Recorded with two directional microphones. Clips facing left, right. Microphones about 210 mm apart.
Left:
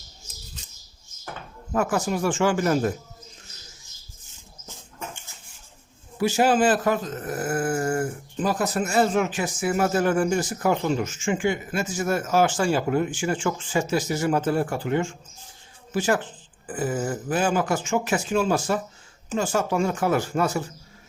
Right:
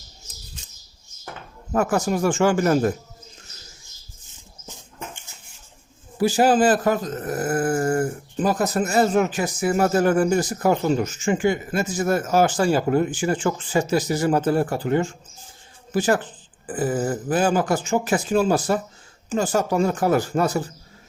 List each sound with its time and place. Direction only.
1.7 s speech: 45° right (ahead or behind)
6.1 s speech: 35° right (ahead or behind)